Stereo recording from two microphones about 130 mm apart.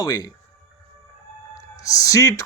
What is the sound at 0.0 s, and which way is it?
Speech, 30° left (ahead or behind).